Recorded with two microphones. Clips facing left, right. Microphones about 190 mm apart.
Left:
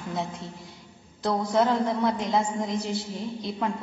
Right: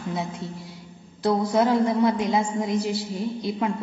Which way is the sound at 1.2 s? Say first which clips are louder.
Right 3 dB; 10° right (ahead or behind).